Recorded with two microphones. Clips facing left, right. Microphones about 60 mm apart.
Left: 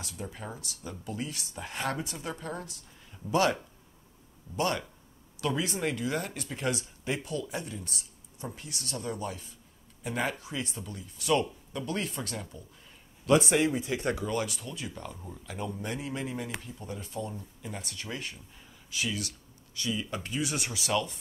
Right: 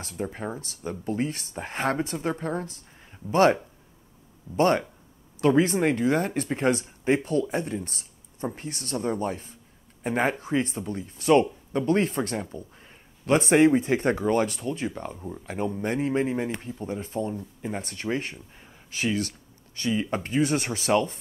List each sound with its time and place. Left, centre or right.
0.0 s speech: right
4.6 s speech: right